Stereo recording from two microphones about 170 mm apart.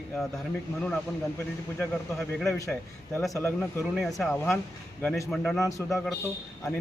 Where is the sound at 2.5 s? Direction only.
20° left (ahead or behind).